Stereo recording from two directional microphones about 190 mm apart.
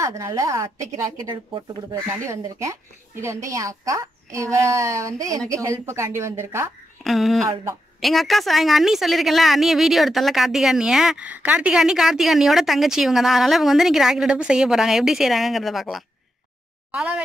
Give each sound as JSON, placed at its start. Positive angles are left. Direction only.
{"t": 0.0, "sound": "speech", "side_deg": -15}
{"t": 7.0, "sound": "a woman's voice", "side_deg": 0}